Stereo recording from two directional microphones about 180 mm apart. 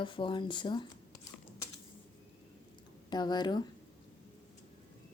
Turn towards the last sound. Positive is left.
turn(degrees=25)  # may be behind; listen again after turning